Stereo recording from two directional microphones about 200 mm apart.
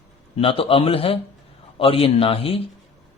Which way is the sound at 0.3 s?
25° left (ahead or behind).